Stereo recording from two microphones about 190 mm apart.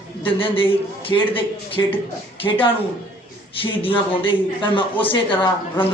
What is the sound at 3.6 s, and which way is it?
Speech, 30° left (ahead or behind).